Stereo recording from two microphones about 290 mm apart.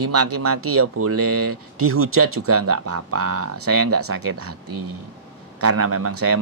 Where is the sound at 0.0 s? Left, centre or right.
Right.